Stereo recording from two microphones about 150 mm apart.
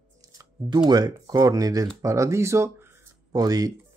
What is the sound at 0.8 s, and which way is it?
Speech, 25° right (ahead or behind).